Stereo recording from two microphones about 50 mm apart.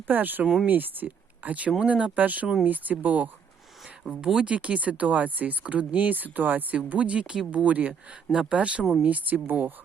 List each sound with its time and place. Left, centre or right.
0.1 s speech: right
4.2 s speech: centre
4.4 s speech: right
8.8 s speech: centre
9.0 s speech: right
9.5 s speech: right